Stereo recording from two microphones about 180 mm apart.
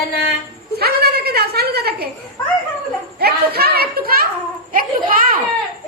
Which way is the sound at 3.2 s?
60° right (ahead or behind).